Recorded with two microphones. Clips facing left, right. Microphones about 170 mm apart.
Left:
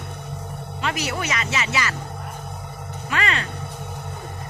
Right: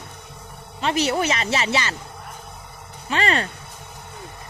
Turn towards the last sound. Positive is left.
turn(degrees=-35)  # may be behind; listen again after turning